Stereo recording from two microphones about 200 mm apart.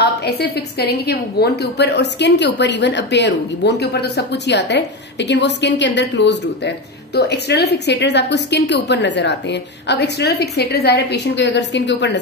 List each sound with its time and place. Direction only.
0.0 s a woman's voice: 55° left (ahead or behind)